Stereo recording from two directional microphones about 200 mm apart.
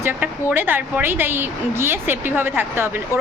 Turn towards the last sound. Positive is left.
turn(degrees=-10)  # may be behind; listen again after turning